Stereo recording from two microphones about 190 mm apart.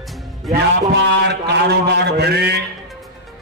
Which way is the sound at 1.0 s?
65° right (ahead or behind).